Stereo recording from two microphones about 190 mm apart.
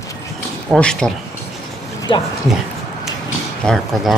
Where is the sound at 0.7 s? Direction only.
5° left (ahead or behind).